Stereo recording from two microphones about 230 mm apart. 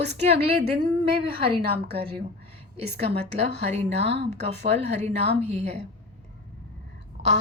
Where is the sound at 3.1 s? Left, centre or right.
Right.